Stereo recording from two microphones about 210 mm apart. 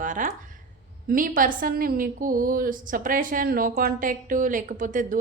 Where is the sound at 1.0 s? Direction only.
40° right (ahead or behind).